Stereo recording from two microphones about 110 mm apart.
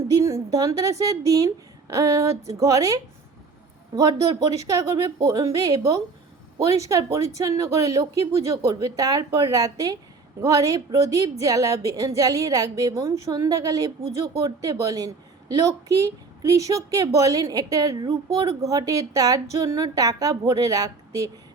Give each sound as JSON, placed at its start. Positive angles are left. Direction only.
{"t": 0.1, "sound": "a woman's voice", "side_deg": -30}